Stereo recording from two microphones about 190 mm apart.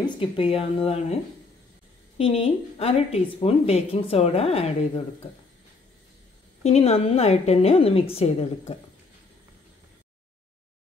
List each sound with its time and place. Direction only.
0.0 s speech: 25° left (ahead or behind)
2.1 s speech: 30° left (ahead or behind)
6.6 s speech: 35° left (ahead or behind)